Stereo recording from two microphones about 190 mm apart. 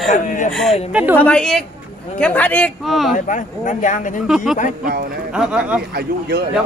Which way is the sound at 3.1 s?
40° left (ahead or behind).